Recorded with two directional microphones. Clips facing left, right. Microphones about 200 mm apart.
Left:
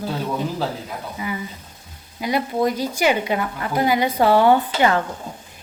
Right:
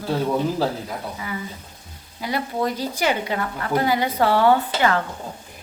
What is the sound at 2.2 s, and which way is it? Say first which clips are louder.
A woman's voice: left 4 dB; 15° left (ahead or behind).